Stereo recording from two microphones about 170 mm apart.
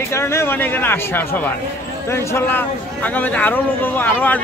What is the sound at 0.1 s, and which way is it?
Speech, 15° left (ahead or behind).